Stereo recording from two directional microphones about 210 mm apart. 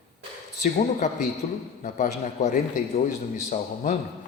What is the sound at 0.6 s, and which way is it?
A man's voice, 35° left (ahead or behind).